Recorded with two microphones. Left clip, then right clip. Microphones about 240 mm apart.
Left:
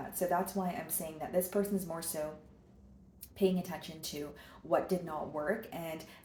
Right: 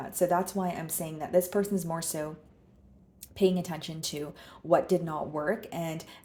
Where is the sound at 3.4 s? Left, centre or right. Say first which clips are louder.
Right 5 dB; right.